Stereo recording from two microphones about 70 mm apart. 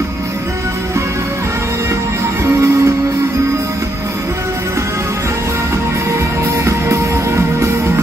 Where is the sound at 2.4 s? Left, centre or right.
Right.